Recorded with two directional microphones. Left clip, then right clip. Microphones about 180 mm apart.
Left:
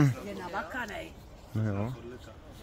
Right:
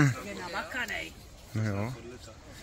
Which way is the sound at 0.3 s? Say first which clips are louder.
Even; 30° left (ahead or behind).